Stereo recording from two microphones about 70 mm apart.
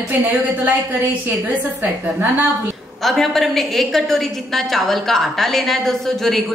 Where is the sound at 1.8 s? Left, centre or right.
Right.